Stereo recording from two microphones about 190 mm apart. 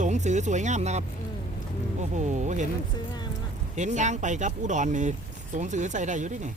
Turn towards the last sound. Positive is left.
turn(degrees=-40)  # may be behind; listen again after turning